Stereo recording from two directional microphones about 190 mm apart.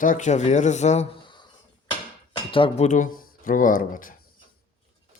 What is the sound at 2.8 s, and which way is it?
Speech, 40° left (ahead or behind).